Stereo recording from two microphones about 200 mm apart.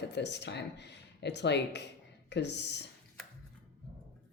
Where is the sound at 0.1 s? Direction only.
60° left (ahead or behind).